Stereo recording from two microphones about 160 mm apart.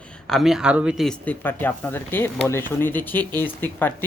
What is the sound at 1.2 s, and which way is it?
Speech, 10° left (ahead or behind).